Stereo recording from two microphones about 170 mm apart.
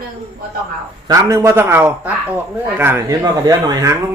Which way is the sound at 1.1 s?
20° right (ahead or behind).